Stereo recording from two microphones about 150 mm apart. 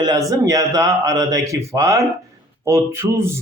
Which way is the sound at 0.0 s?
25° right (ahead or behind).